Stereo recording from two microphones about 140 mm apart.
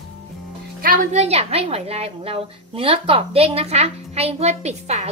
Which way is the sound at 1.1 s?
50° right (ahead or behind).